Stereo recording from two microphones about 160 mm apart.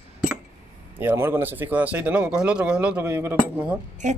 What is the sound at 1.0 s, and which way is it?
Speech, 15° right (ahead or behind).